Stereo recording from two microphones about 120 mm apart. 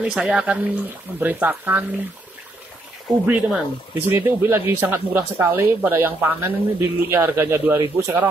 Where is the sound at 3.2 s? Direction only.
15° right (ahead or behind).